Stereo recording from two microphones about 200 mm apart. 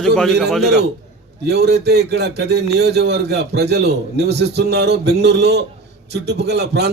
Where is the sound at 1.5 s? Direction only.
55° right (ahead or behind).